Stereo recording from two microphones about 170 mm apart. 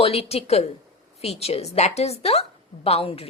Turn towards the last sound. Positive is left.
turn(degrees=35)  # may be behind; listen again after turning